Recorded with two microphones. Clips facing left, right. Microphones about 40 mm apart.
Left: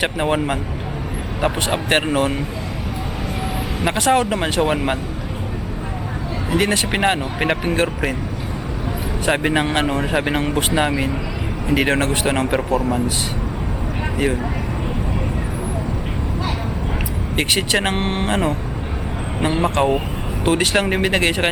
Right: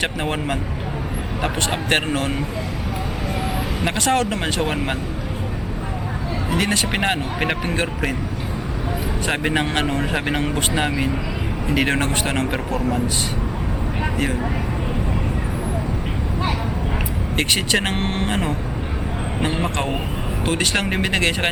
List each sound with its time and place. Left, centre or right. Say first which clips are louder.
0.0 s speech: left 4 dB; centre
3.9 s speech: left 4 dB; centre
6.5 s speech: left 3 dB; centre
9.2 s speech: left 4 dB; centre
17.3 s speech: left 1 dB; centre
18.0 s speech: left 2 dB; centre
19.4 s speech: left 6 dB; centre